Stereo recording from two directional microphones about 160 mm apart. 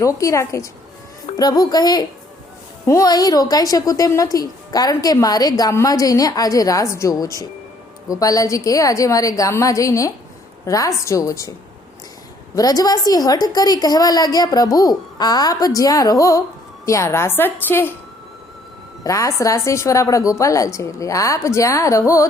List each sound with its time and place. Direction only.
0.0 s a woman's voice: 20° left (ahead or behind)
12.5 s a woman's voice: 25° left (ahead or behind)
19.0 s a woman's voice: 20° left (ahead or behind)